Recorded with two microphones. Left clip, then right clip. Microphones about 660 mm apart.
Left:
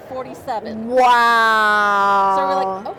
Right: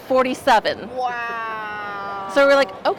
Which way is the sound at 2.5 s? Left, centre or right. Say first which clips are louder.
Right 3 dB; right.